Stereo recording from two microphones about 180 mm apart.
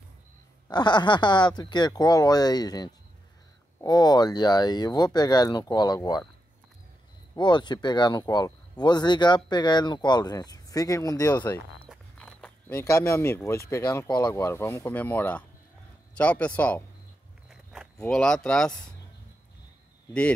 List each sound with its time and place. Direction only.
0.7 s speech: 25° left (ahead or behind)
7.3 s speech: 25° left (ahead or behind)
11.9 s a sound: 5° left (ahead or behind)
13.7 s speech: 15° left (ahead or behind)
17.9 s speech: 5° left (ahead or behind)